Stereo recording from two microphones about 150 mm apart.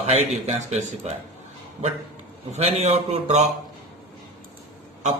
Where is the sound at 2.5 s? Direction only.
45° right (ahead or behind).